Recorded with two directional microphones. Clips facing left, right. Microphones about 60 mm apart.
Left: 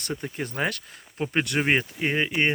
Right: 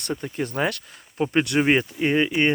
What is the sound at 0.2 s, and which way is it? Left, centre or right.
Speech, centre.